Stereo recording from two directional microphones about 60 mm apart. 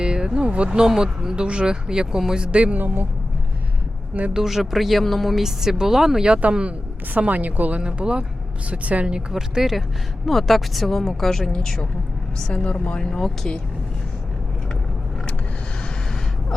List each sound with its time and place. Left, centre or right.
0.0 s speech: centre
2.7 s speech: right
4.4 s speech: centre; by 7.8 s right
7.8 s a woman's voice: centre